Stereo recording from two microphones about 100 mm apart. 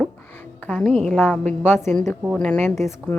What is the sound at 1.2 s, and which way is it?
A woman's voice, 15° left (ahead or behind).